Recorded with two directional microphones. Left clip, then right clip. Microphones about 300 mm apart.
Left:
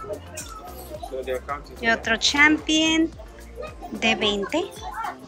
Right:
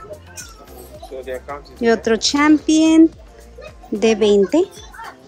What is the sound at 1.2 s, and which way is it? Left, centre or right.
Speech, right.